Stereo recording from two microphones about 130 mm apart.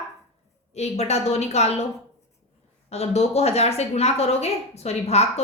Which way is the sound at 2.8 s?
55° left (ahead or behind).